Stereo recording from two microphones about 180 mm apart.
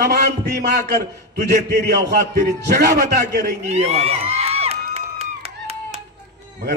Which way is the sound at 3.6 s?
40° right (ahead or behind).